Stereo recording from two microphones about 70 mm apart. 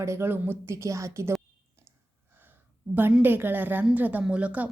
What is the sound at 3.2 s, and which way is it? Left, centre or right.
A woman's voice, right.